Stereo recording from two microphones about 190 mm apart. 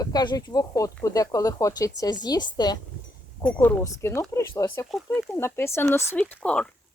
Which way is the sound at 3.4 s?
5° left (ahead or behind).